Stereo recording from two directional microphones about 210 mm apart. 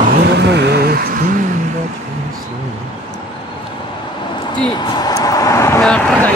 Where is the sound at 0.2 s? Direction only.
55° right (ahead or behind).